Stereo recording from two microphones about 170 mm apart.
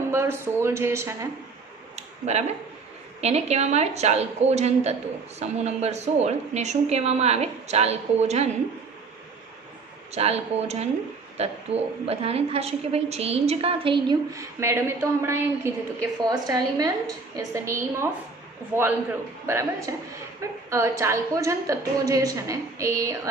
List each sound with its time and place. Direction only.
0.1 s speech: 15° right (ahead or behind)
2.0 s a sound: 40° right (ahead or behind)
3.2 s a woman's voice: 40° right (ahead or behind)
10.2 s a woman's voice: 35° right (ahead or behind)
14.6 s a woman's voice: 15° right (ahead or behind)